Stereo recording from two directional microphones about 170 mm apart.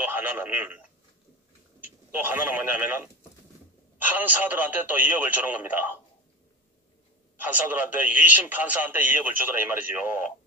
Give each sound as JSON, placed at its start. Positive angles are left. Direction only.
{"t": 0.0, "sound": "speech", "side_deg": -10}
{"t": 2.0, "sound": "a man's voice", "side_deg": -10}
{"t": 7.3, "sound": "a man's voice", "side_deg": -10}